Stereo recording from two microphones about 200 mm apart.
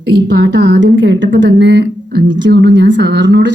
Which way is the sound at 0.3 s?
60° right (ahead or behind).